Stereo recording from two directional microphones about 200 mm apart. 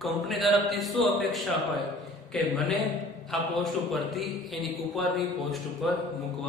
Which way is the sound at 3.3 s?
Centre (ahead or behind).